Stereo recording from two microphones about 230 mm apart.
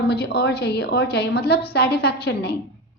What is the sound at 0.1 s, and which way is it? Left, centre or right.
A woman's voice, left.